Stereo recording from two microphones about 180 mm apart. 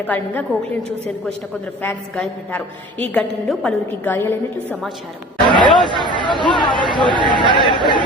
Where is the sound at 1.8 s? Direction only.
10° left (ahead or behind).